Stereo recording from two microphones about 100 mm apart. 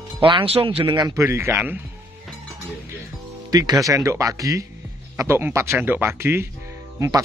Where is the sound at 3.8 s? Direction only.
30° right (ahead or behind).